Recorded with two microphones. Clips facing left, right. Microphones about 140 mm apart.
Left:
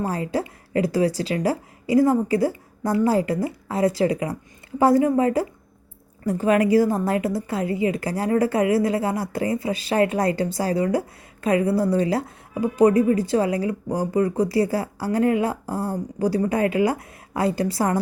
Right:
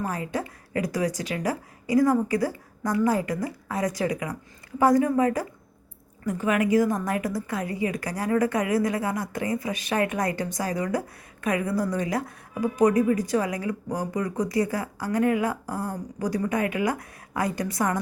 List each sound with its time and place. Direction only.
0.0 s a woman's voice: 30° left (ahead or behind)